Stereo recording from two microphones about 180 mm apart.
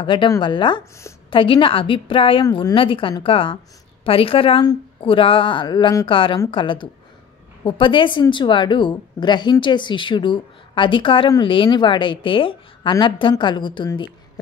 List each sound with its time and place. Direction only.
0.0 s speech: 25° left (ahead or behind)